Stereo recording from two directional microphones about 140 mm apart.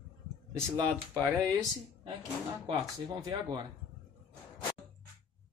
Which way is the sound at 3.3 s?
30° right (ahead or behind).